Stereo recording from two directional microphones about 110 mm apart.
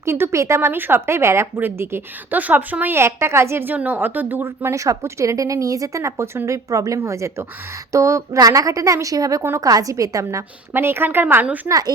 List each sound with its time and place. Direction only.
0.0 s speech: 25° right (ahead or behind)